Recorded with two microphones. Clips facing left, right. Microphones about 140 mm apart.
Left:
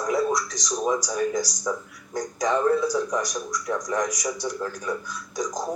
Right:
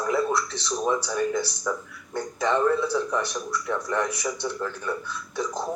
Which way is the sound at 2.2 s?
10° left (ahead or behind).